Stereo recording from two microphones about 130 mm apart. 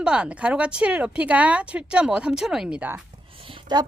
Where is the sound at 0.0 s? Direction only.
10° right (ahead or behind).